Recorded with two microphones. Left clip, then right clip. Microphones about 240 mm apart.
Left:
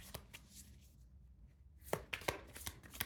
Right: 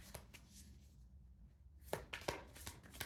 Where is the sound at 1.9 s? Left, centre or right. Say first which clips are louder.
Left 4 dB; left.